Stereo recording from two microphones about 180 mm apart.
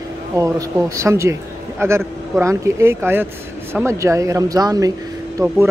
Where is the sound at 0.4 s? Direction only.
15° right (ahead or behind).